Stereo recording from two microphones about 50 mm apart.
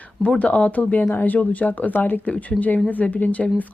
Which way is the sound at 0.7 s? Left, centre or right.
Left.